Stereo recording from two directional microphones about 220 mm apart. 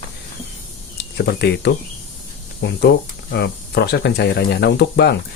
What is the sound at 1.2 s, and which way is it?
Speech, 50° left (ahead or behind).